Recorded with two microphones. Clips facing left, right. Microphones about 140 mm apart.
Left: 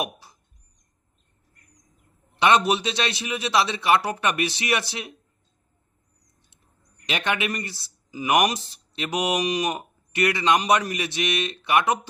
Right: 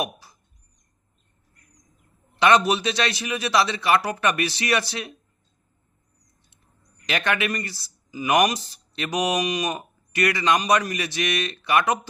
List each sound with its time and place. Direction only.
0.0 s a sound: 25° left (ahead or behind)
2.4 s a man's voice: 25° left (ahead or behind)
7.0 s a man's voice: 20° left (ahead or behind)